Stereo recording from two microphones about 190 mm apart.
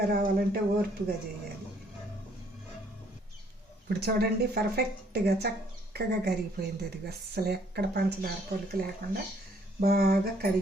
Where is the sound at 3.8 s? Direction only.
55° right (ahead or behind).